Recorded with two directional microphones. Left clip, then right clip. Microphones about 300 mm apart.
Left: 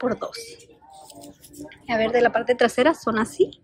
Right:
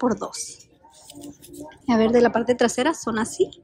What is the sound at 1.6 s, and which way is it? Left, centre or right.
Speech, centre.